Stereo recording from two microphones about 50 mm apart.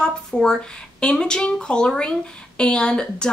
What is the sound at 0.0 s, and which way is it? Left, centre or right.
A woman's voice, centre.